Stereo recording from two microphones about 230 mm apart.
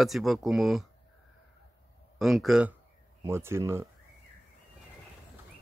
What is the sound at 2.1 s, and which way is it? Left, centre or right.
Speech, centre.